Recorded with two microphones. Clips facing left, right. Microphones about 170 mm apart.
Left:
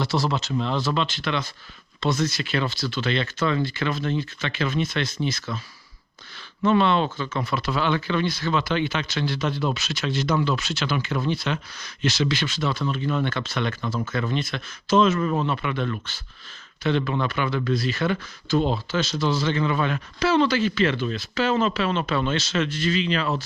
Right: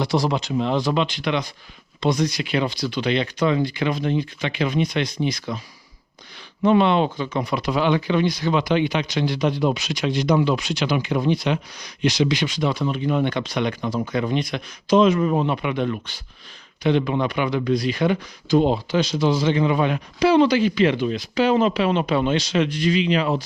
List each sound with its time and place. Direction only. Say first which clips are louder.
0.6 s speech: right 5 dB; 10° right (ahead or behind)
6.7 s speech: right 3 dB; 15° right (ahead or behind)